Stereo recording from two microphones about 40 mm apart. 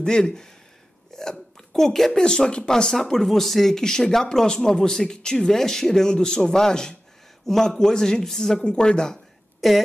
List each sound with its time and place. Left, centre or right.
0.0 s speech: centre
1.1 s hiccup: centre
2.1 s speech: centre
9.6 s speech: centre